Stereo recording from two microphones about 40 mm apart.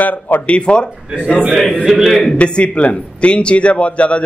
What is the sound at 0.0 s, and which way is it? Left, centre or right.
Speech, left.